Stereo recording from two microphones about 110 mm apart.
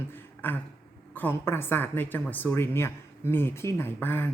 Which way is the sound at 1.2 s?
20° left (ahead or behind).